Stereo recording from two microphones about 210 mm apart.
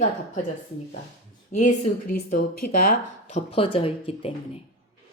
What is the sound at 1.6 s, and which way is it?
Speech, 40° left (ahead or behind).